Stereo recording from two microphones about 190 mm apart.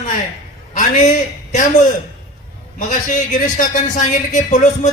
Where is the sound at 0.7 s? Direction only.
40° left (ahead or behind).